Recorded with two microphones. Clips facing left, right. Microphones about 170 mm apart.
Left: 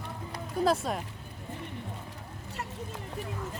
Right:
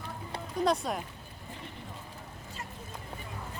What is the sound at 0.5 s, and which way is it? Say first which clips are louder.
Speech: left 2 dB; 5° left (ahead or behind).